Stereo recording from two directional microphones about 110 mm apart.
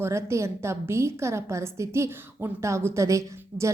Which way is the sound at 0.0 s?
25° right (ahead or behind).